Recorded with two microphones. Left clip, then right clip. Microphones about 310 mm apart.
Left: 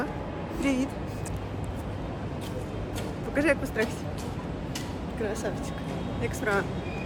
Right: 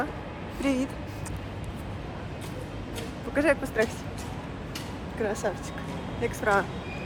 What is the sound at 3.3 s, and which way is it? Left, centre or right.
Speech, centre.